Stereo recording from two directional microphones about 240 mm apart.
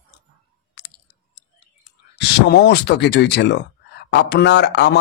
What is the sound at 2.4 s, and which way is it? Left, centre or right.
Speech, left.